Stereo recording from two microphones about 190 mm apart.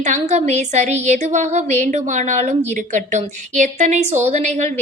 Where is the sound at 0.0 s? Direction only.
35° right (ahead or behind).